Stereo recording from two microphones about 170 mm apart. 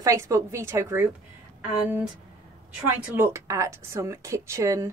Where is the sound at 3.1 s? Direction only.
15° right (ahead or behind).